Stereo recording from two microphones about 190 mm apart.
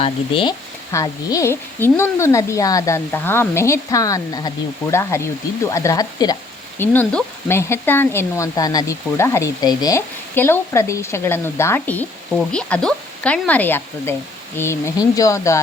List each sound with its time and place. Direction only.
0.0 s frying: 25° left (ahead or behind)
5.7 s speech: 15° left (ahead or behind)
6.7 s frying: 10° left (ahead or behind)